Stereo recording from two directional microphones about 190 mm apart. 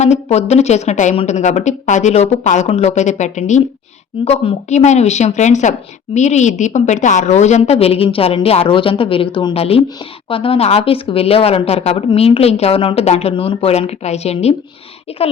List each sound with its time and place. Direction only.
0.0 s speech: 35° left (ahead or behind)